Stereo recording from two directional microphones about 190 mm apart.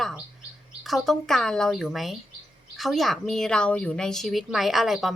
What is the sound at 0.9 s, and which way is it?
Speech, centre (ahead or behind).